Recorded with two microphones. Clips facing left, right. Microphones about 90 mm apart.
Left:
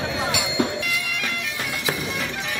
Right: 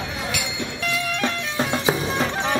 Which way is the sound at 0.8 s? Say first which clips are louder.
Right 4 dB; 35° right (ahead or behind).